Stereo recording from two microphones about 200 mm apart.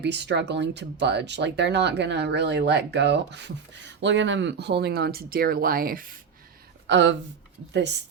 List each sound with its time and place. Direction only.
0.0 s speech: 60° right (ahead or behind)
6.8 s speech: 65° right (ahead or behind)